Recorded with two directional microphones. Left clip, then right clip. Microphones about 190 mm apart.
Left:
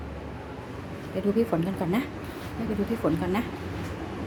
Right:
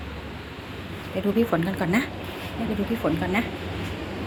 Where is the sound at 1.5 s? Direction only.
15° left (ahead or behind).